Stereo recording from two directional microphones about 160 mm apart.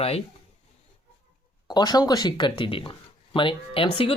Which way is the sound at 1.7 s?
25° left (ahead or behind).